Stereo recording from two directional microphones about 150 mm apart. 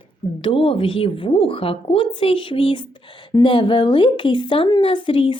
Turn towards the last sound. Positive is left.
turn(degrees=35)  # may be behind; listen again after turning